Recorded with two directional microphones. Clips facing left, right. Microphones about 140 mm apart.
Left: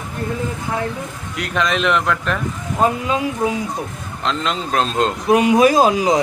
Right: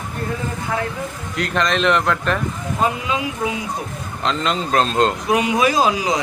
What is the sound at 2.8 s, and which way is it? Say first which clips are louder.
Speech: left 3 dB; 40° left (ahead or behind).